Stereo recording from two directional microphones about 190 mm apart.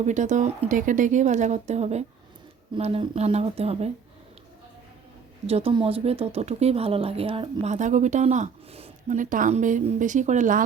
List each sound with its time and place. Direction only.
0.0 s speech: 40° right (ahead or behind)
5.5 s speech: 30° right (ahead or behind)